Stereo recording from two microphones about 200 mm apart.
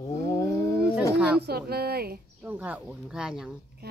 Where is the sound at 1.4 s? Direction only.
50° right (ahead or behind).